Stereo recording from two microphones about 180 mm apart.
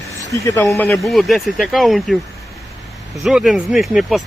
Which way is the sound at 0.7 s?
5° left (ahead or behind).